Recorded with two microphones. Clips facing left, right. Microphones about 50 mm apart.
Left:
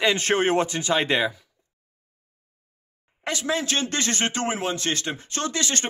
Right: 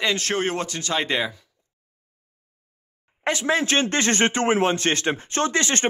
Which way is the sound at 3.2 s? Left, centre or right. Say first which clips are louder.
Right 4 dB; right.